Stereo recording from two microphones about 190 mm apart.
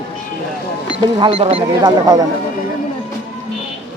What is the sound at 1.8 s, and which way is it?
Speech, 20° right (ahead or behind).